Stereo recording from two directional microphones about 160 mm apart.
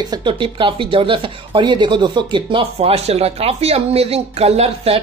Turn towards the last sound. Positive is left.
turn(degrees=-40)  # may be behind; listen again after turning